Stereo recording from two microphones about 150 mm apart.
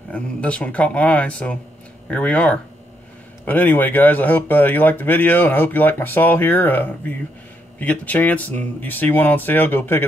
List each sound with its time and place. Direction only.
0.1 s speech: 10° left (ahead or behind)